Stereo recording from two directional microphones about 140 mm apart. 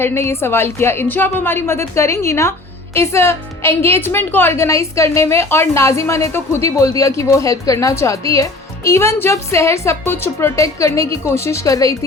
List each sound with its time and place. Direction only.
0.0 s a woman's voice: 20° left (ahead or behind)